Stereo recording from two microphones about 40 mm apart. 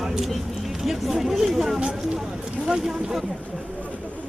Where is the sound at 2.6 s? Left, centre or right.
Right.